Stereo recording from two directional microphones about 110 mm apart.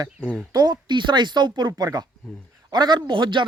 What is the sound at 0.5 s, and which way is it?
A man's voice, 40° right (ahead or behind).